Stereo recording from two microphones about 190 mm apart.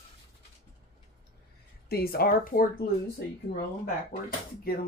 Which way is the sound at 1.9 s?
50° left (ahead or behind).